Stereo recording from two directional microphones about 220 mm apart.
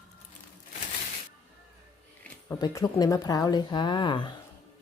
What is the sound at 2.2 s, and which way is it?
Speech, 15° left (ahead or behind).